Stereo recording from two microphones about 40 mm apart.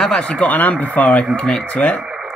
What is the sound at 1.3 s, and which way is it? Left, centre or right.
Speech, left.